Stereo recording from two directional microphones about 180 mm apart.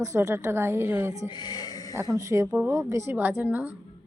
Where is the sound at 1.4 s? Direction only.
20° left (ahead or behind).